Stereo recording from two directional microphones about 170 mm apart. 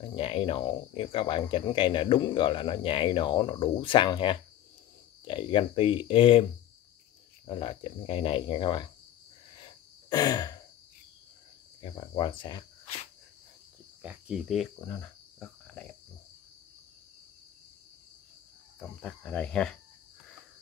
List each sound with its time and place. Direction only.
0.0 s speech: 35° left (ahead or behind)
7.4 s speech: 35° left (ahead or behind)
9.6 s cricket: 20° left (ahead or behind)
11.8 s speech: 30° left (ahead or behind)
14.0 s speech: 10° right (ahead or behind)
14.8 s cricket: 10° left (ahead or behind)
18.8 s cricket: 5° left (ahead or behind)